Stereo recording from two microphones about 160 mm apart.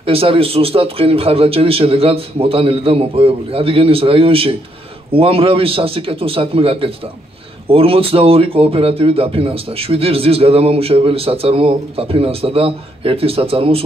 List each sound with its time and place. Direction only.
0.0 s speech: 35° right (ahead or behind)